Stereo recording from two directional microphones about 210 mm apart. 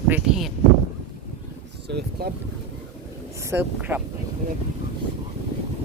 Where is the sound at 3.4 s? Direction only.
10° right (ahead or behind).